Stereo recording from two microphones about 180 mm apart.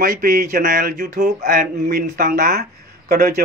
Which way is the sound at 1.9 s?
60° right (ahead or behind).